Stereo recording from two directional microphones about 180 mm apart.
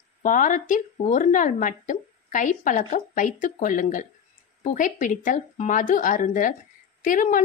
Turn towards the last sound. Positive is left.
turn(degrees=45)  # may be behind; listen again after turning